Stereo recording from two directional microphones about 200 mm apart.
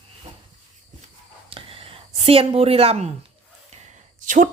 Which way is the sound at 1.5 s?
25° right (ahead or behind).